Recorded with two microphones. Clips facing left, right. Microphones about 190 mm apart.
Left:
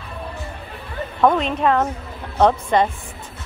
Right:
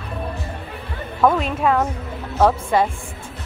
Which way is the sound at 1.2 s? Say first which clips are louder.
Left 1 dB; 5° right (ahead or behind).